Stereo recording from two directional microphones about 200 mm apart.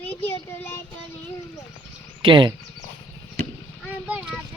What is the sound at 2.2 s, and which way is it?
Speech, 25° right (ahead or behind).